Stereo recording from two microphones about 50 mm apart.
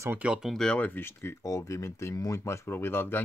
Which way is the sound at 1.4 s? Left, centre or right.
Left.